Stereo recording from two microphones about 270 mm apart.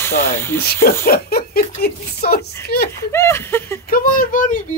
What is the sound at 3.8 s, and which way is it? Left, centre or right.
Speech, left.